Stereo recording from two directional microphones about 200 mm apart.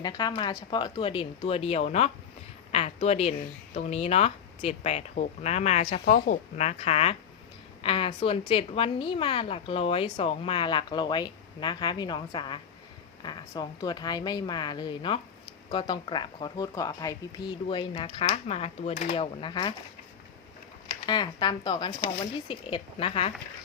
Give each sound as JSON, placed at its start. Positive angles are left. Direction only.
{"t": 0.0, "sound": "a woman's voice", "side_deg": 20}
{"t": 21.1, "sound": "a woman's voice", "side_deg": 20}